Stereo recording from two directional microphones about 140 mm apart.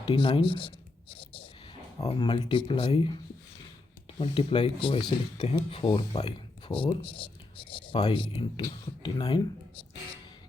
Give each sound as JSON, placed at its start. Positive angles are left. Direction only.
{"t": 0.1, "sound": "speech", "side_deg": 35}
{"t": 1.1, "sound": "a sound", "side_deg": 40}
{"t": 2.1, "sound": "speech", "side_deg": 35}
{"t": 4.2, "sound": "speech", "side_deg": 45}
{"t": 5.4, "sound": "speech", "side_deg": 45}